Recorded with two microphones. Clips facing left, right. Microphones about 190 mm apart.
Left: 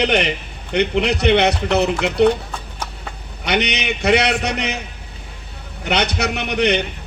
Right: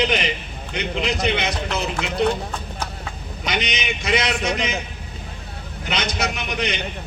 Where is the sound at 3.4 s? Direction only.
65° left (ahead or behind).